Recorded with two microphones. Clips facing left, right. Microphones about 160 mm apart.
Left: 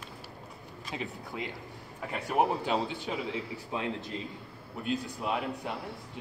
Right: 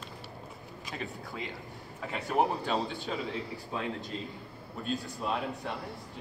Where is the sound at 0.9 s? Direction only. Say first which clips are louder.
Left 2 dB; 15° left (ahead or behind).